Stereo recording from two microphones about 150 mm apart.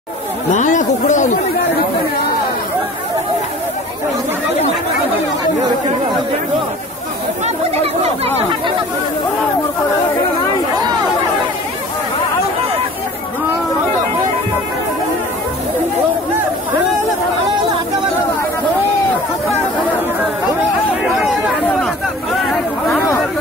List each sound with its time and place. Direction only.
0.5 s a sound: 55° left (ahead or behind)
7.4 s chatter: 45° right (ahead or behind)
8.4 s speech: 35° right (ahead or behind)
21.6 s chatter: 5° left (ahead or behind)